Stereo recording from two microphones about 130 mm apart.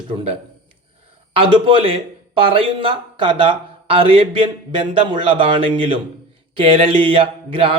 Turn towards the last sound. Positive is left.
turn(degrees=-45)  # may be behind; listen again after turning